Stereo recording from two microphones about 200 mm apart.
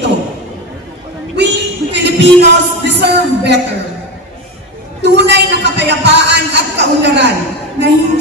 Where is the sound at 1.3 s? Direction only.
60° right (ahead or behind).